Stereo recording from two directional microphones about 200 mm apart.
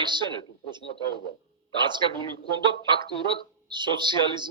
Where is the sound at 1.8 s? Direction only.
20° right (ahead or behind).